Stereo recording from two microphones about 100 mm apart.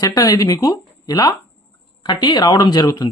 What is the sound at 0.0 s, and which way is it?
Speech, 35° left (ahead or behind).